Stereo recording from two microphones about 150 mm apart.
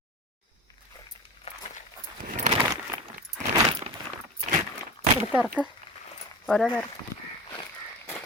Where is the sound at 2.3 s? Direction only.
55° right (ahead or behind).